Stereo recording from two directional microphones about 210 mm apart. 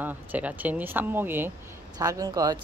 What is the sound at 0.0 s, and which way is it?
A woman's voice, 5° right (ahead or behind).